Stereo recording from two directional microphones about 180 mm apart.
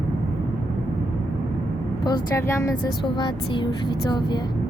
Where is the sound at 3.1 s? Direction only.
25° left (ahead or behind).